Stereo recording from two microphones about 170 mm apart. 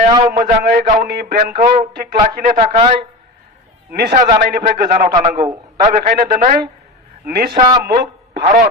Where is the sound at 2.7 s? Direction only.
35° right (ahead or behind).